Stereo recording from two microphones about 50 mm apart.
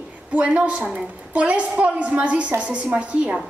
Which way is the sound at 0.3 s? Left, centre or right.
Right.